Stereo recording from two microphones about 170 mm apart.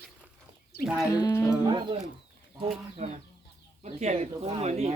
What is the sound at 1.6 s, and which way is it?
Speech, 25° right (ahead or behind).